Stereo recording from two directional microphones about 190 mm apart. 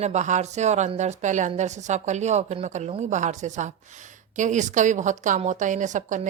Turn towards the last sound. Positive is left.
turn(degrees=-40)  # may be behind; listen again after turning